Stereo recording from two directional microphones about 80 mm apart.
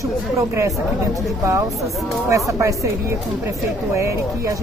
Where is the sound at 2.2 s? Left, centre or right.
Right.